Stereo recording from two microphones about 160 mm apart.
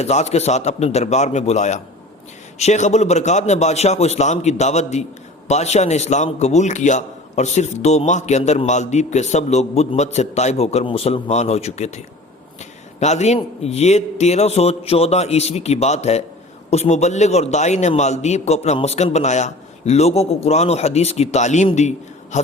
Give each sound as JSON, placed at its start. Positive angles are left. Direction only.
{"t": 0.0, "sound": "a man's voice", "side_deg": 45}
{"t": 13.0, "sound": "a man's voice", "side_deg": 45}